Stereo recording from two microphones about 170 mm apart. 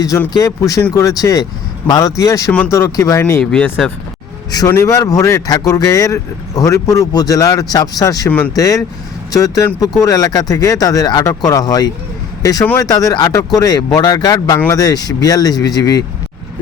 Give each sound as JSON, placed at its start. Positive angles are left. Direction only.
{"t": 0.0, "sound": "speech", "side_deg": 20}
{"t": 3.4, "sound": "speech", "side_deg": 5}
{"t": 4.5, "sound": "speech", "side_deg": 20}